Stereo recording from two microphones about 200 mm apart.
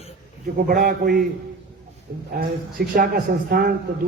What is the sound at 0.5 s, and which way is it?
Speech, 45° right (ahead or behind).